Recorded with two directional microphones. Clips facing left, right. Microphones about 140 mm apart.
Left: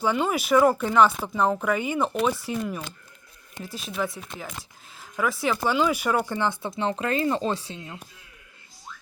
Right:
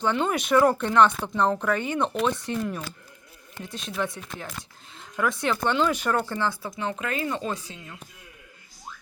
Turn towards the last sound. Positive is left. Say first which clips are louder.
# left 4 dB
turn(degrees=30)  # may be behind; listen again after turning